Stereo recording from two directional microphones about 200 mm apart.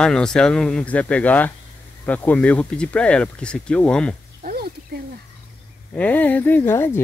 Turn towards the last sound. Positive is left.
turn(degrees=10)  # may be behind; listen again after turning